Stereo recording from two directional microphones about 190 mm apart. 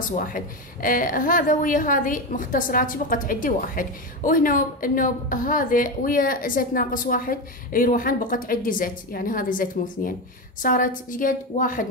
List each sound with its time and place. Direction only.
0.1 s a woman's voice: 45° left (ahead or behind)